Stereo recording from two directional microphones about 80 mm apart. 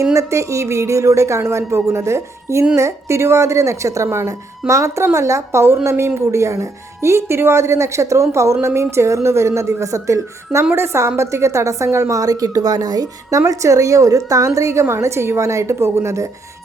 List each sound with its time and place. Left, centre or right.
0.1 s a woman's voice: right
13.5 s a woman's voice: right